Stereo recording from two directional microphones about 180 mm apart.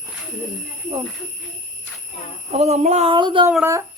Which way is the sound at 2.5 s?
40° right (ahead or behind).